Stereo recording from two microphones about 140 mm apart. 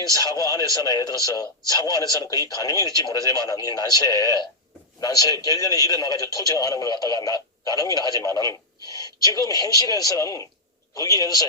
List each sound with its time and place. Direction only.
0.1 s a man's voice: 25° left (ahead or behind)